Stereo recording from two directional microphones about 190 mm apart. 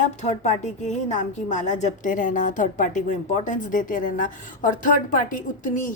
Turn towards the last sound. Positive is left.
turn(degrees=45)  # may be behind; listen again after turning